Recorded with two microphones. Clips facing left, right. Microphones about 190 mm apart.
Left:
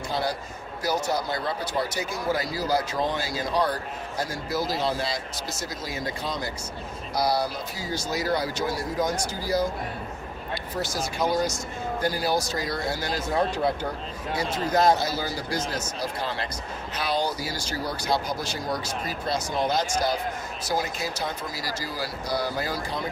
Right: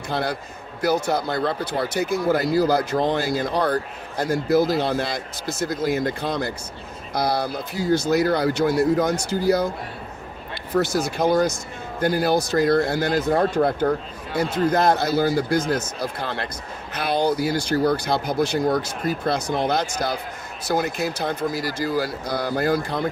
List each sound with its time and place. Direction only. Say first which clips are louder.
0.1 s speech: right 4 dB; 60° right (ahead or behind)